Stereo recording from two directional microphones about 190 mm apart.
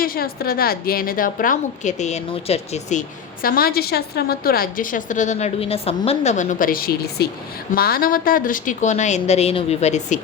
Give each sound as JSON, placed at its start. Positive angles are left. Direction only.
{"t": 0.0, "sound": "a woman's voice", "side_deg": 50}
{"t": 3.4, "sound": "a woman's voice", "side_deg": 50}